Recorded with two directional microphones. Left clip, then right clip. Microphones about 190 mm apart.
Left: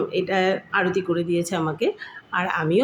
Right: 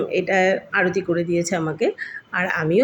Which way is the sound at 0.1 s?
5° right (ahead or behind).